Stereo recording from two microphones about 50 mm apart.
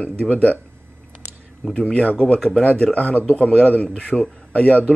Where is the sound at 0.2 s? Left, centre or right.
Left.